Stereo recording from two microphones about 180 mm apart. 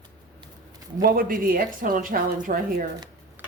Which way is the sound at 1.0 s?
50° right (ahead or behind).